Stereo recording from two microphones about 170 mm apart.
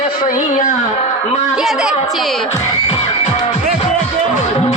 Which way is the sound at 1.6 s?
5° right (ahead or behind).